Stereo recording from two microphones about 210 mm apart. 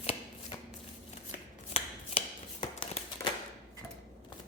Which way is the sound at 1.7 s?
25° left (ahead or behind).